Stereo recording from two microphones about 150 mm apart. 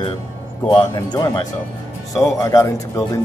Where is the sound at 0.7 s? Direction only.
30° left (ahead or behind).